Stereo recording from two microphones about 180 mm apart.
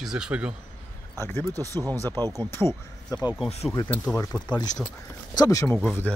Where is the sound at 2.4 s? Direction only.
15° left (ahead or behind).